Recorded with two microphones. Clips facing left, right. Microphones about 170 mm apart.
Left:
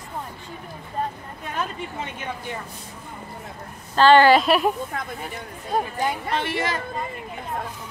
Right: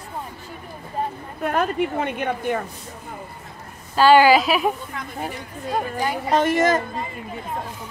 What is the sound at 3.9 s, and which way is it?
Speech, 5° right (ahead or behind).